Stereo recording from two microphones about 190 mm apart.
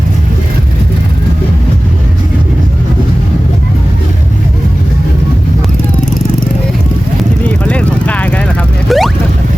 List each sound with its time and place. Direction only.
7.4 s vehicle: 5° left (ahead or behind)